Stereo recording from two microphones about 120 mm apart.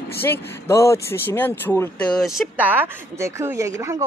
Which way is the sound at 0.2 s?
20° left (ahead or behind).